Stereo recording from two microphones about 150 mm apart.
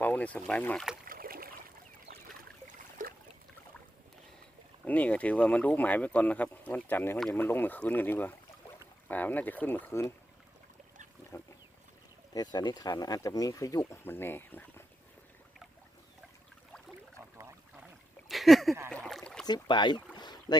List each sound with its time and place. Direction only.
0.0 s speech: 10° left (ahead or behind)
1.0 s boat: 75° right (ahead or behind)
3.0 s boat: 60° right (ahead or behind)
4.9 s speech: 10° left (ahead or behind)
12.3 s speech: 25° left (ahead or behind)
18.3 s a sound: centre (ahead or behind)
18.9 s boat: 5° left (ahead or behind)
19.5 s speech: 30° left (ahead or behind)
20.1 s boat: 30° left (ahead or behind)